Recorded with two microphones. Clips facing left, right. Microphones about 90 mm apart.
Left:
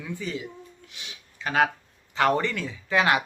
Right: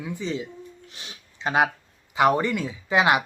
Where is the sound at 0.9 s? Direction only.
35° right (ahead or behind).